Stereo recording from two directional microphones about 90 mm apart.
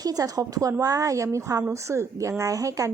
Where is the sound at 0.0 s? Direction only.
45° right (ahead or behind).